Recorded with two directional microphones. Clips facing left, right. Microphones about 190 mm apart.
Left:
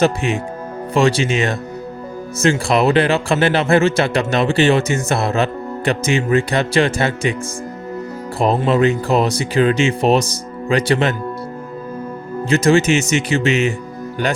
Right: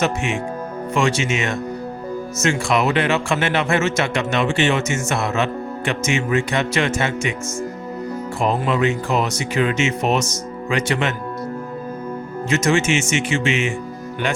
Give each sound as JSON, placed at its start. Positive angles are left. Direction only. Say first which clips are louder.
{"t": 0.0, "sound": "a man's voice", "louder": "left 4 dB", "side_deg": 35}
{"t": 8.4, "sound": "a man's voice", "louder": "left 5 dB", "side_deg": 35}
{"t": 12.5, "sound": "a man's voice", "louder": "left 5 dB", "side_deg": 35}